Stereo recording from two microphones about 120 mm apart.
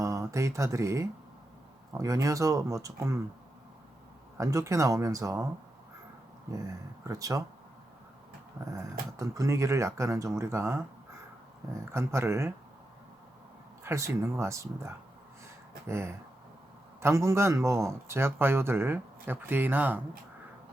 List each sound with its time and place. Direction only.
0.0 s speech: 25° right (ahead or behind)
4.4 s speech: 25° right (ahead or behind)
6.5 s speech: 30° right (ahead or behind)
8.7 s speech: 25° right (ahead or behind)
11.9 s speech: 20° right (ahead or behind)
13.8 s speech: 25° right (ahead or behind)